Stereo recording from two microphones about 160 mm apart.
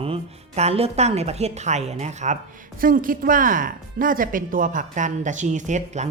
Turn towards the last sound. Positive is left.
turn(degrees=-50)  # may be behind; listen again after turning